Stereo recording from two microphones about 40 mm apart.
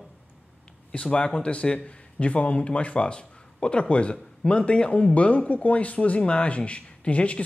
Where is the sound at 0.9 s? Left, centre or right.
Left.